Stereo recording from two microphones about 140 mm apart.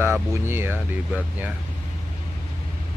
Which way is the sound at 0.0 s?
15° right (ahead or behind).